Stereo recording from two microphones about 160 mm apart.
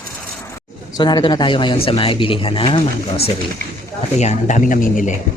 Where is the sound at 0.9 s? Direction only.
25° left (ahead or behind).